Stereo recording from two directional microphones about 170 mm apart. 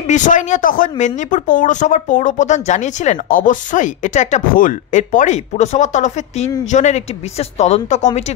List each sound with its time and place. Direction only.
0.0 s speech: 45° left (ahead or behind)